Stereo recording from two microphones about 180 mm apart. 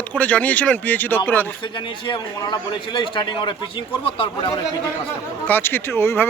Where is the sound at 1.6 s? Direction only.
25° left (ahead or behind).